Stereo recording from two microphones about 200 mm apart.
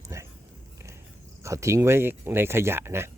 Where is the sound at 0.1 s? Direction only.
15° right (ahead or behind).